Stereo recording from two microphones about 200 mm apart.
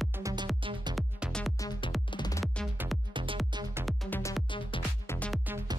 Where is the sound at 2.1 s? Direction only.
20° left (ahead or behind).